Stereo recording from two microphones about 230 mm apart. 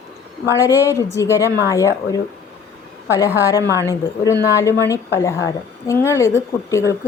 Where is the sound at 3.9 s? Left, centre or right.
Centre.